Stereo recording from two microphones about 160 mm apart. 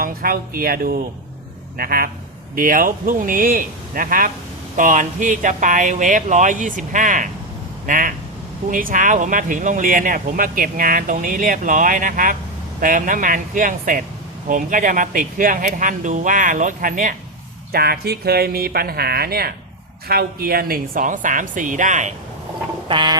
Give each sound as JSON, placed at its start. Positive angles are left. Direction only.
{"t": 0.0, "sound": "speech", "side_deg": -65}
{"t": 17.7, "sound": "speech", "side_deg": -75}
{"t": 22.9, "sound": "a sound", "side_deg": -30}